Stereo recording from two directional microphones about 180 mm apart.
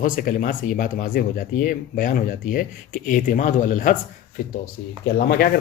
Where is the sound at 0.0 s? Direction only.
50° left (ahead or behind).